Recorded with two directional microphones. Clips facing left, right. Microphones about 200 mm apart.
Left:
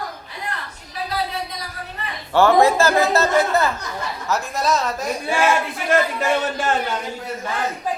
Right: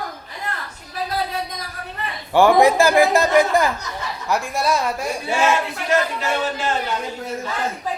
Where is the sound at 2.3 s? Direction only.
15° right (ahead or behind).